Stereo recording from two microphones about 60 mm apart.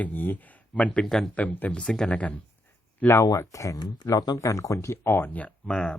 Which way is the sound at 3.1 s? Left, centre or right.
Left.